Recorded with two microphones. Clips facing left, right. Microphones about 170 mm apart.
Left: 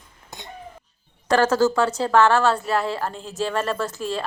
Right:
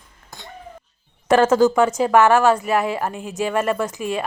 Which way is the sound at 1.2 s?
20° right (ahead or behind).